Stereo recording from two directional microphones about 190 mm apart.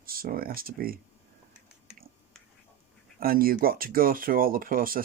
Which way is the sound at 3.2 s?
50° right (ahead or behind).